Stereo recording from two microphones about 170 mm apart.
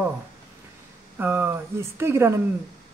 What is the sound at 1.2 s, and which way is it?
A woman's voice, 10° right (ahead or behind).